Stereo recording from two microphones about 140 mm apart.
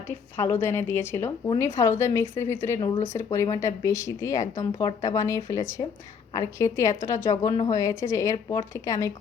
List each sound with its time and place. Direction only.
0.1 s a woman's voice: 15° left (ahead or behind)